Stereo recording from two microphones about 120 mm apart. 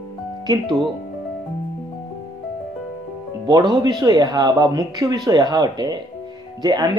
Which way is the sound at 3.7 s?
35° right (ahead or behind).